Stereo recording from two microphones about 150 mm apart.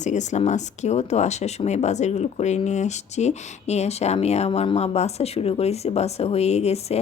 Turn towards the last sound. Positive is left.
turn(degrees=45)  # may be behind; listen again after turning